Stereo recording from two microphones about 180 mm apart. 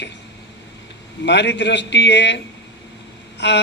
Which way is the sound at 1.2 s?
75° left (ahead or behind).